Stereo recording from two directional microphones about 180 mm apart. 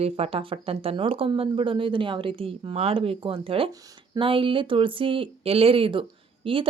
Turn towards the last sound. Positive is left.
turn(degrees=-30)  # may be behind; listen again after turning